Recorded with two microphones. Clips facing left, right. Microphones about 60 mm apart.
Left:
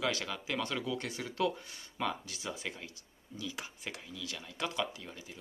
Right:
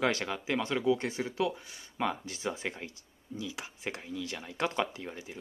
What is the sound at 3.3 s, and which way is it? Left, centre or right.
Speech, centre.